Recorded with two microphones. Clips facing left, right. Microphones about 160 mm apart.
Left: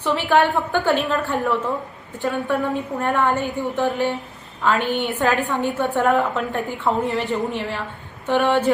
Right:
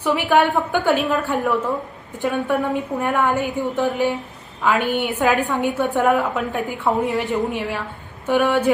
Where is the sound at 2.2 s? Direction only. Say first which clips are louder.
Right 1 dB; 15° right (ahead or behind).